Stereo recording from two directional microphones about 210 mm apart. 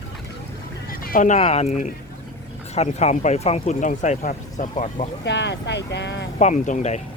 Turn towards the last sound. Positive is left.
turn(degrees=35)  # may be behind; listen again after turning